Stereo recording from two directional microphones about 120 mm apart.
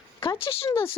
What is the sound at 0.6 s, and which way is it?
Speech, 20° left (ahead or behind).